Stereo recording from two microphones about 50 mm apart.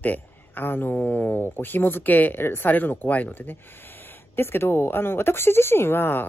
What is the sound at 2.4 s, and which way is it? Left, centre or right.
Speech, left.